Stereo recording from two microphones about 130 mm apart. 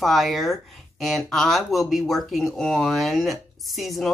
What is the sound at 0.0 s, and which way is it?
Speech, centre (ahead or behind).